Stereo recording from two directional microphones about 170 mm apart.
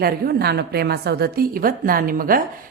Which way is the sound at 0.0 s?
65° right (ahead or behind).